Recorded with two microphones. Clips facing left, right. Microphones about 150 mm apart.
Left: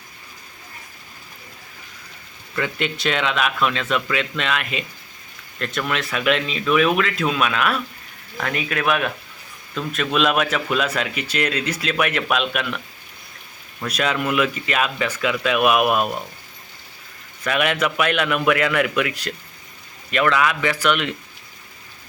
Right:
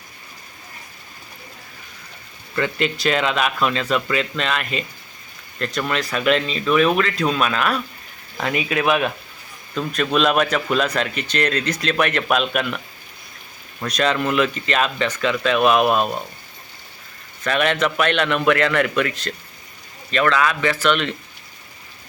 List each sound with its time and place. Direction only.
2.6 s speech: centre (ahead or behind)
8.4 s speech: 15° right (ahead or behind)
9.7 s speech: centre (ahead or behind)
13.8 s speech: 5° left (ahead or behind)
17.4 s speech: 10° left (ahead or behind)